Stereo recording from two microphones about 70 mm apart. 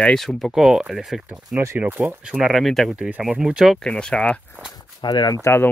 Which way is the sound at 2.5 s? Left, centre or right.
Centre.